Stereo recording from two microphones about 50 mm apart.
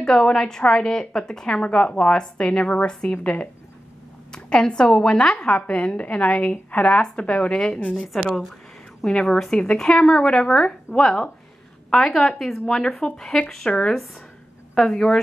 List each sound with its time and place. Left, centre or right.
0.0 s speech: centre
2.6 s a woman's voice: left
2.9 s speech: centre
4.5 s a woman's voice: centre
13.7 s a woman's voice: centre